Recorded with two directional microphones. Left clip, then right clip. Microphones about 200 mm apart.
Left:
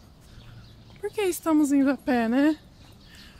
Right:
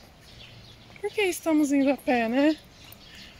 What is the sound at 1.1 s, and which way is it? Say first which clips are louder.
Speech: left 1 dB; 15° left (ahead or behind).